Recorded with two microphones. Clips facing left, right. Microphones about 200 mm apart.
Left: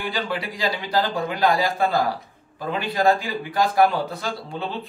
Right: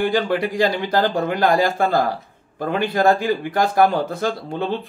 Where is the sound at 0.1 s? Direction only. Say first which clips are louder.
Right 8 dB; 50° right (ahead or behind).